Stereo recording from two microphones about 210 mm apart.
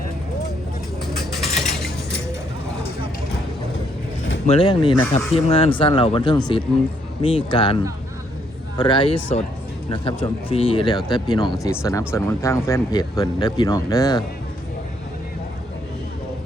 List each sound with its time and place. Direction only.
1.0 s vehicle: centre (ahead or behind)
4.4 s speech: 25° left (ahead or behind)
8.8 s speech: 20° left (ahead or behind)